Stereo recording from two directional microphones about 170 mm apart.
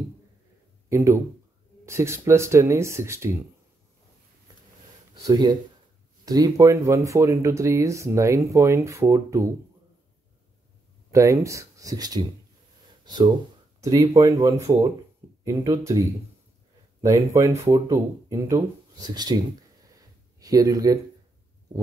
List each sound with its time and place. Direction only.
0.8 s speech: 15° right (ahead or behind)
5.2 s speech: 25° right (ahead or behind)
11.1 s speech: 20° right (ahead or behind)
17.0 s speech: 20° right (ahead or behind)
20.0 s a sound: 20° right (ahead or behind)